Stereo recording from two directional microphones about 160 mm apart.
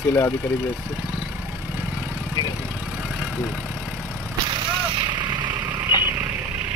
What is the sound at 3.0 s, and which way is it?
Vehicle, 5° right (ahead or behind).